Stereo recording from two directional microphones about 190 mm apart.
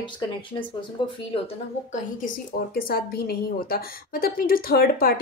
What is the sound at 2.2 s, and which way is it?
A woman's voice, 45° left (ahead or behind).